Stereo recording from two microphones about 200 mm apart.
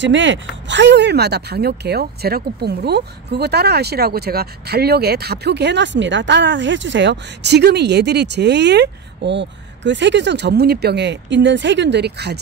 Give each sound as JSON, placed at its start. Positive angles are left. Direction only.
{"t": 0.0, "sound": "speech", "side_deg": -65}